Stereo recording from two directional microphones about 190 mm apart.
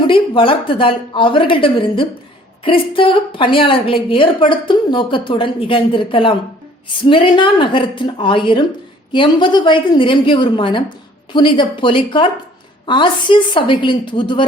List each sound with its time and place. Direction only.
0.0 s a woman's voice: 25° left (ahead or behind)